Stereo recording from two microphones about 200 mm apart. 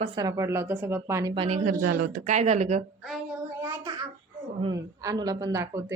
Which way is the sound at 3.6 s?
10° right (ahead or behind).